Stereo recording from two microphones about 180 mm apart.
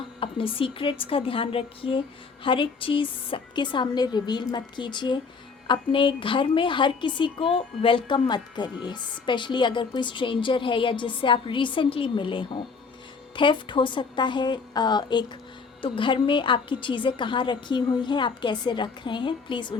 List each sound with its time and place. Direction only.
0.0 s a woman's voice: 30° left (ahead or behind)